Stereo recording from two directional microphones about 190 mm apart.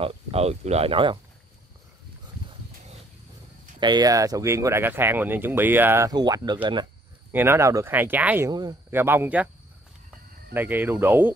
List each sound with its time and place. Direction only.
0.0 s speech: 30° right (ahead or behind)
3.8 s speech: 20° right (ahead or behind)
7.3 s speech: 15° right (ahead or behind)
8.5 s speech: 20° right (ahead or behind)
10.5 s speech: 10° right (ahead or behind)